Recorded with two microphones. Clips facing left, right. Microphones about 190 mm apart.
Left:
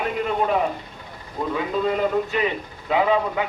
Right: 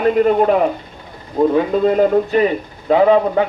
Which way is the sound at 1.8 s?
45° right (ahead or behind).